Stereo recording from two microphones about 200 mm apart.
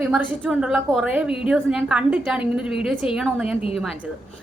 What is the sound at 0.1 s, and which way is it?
A woman's voice, 5° right (ahead or behind).